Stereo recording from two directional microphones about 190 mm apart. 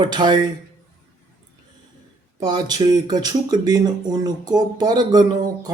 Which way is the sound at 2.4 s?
20° right (ahead or behind).